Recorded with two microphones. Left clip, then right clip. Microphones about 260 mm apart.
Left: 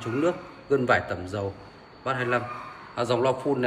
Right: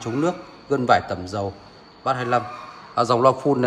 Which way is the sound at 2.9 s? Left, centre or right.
Right.